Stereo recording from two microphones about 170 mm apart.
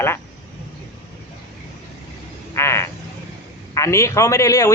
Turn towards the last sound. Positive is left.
turn(degrees=20)  # may be behind; listen again after turning